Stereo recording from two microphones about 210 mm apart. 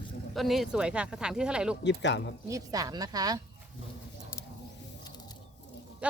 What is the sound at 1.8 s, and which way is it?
Speech, 55° left (ahead or behind).